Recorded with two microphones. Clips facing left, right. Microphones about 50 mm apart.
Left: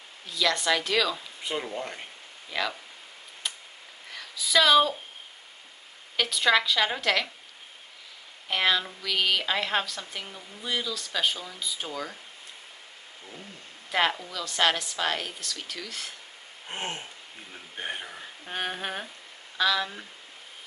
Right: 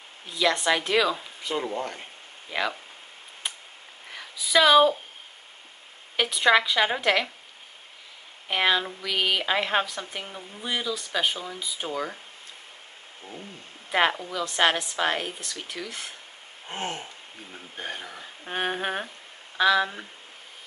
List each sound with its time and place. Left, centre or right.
0.3 s a woman's voice: right
2.5 s a woman's voice: right
3.4 s a sound: right
4.1 s a woman's voice: centre
6.1 s a woman's voice: centre
8.5 s a woman's voice: centre
13.8 s a woman's voice: right
16.7 s speech: left
18.4 s a woman's voice: centre